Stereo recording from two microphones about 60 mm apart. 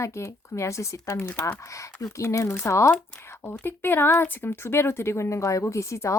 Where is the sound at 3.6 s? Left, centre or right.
Left.